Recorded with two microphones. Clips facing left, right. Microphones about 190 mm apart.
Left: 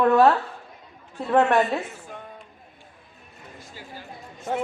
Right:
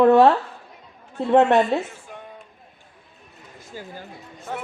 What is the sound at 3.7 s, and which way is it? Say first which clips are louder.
Speech: right 9 dB; 45° right (ahead or behind).